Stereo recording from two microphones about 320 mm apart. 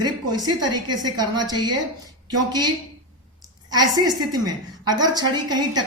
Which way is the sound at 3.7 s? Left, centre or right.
Centre.